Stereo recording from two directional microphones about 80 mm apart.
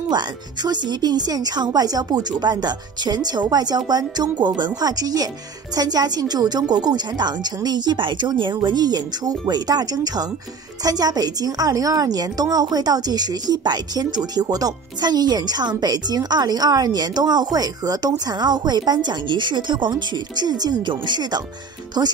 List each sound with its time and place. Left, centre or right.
0.1 s a woman's voice: right